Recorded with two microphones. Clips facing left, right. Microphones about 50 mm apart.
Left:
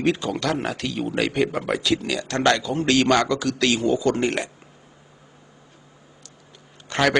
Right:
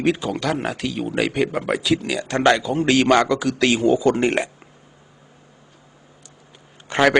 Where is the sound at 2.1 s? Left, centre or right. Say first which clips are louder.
Right 4 dB; centre.